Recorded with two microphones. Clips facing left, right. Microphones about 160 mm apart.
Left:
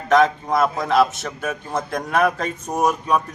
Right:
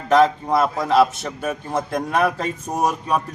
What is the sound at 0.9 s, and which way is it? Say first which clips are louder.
Speech: right 1 dB; 35° right (ahead or behind).